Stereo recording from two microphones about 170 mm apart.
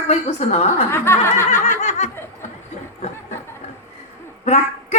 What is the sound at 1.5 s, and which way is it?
Snicker, 45° left (ahead or behind).